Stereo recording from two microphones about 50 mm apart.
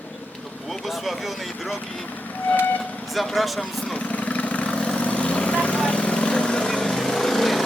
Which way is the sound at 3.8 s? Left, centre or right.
Centre.